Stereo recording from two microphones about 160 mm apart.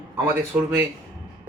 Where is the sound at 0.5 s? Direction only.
15° right (ahead or behind).